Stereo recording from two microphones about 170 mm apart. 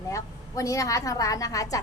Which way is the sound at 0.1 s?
20° left (ahead or behind).